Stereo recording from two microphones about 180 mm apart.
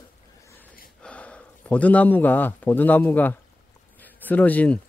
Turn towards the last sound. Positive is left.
turn(degrees=10)  # may be behind; listen again after turning